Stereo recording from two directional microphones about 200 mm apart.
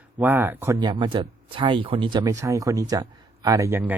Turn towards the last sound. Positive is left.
turn(degrees=-10)  # may be behind; listen again after turning